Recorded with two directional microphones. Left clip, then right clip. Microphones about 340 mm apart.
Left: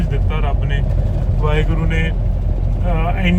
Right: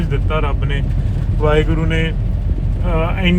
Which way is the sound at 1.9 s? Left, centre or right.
Centre.